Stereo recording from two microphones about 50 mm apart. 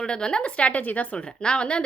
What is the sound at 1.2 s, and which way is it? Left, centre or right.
Speech, centre.